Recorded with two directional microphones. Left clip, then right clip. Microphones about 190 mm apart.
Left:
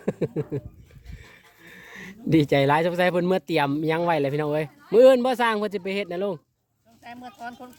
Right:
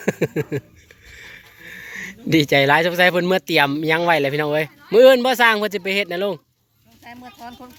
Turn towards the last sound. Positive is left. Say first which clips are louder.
# right 1 dB
turn(degrees=30)  # may be behind; listen again after turning